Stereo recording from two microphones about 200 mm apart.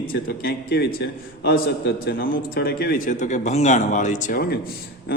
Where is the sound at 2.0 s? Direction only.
45° left (ahead or behind).